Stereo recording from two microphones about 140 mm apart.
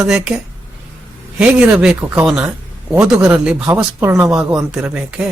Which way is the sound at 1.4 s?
10° right (ahead or behind).